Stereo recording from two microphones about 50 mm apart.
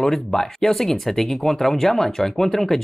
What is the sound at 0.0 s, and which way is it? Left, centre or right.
Speech, centre.